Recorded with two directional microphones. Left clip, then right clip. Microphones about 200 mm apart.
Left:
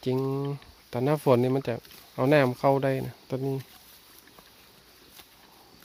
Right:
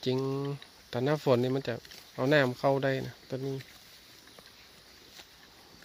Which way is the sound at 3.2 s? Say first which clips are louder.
Left 5 dB; 20° left (ahead or behind).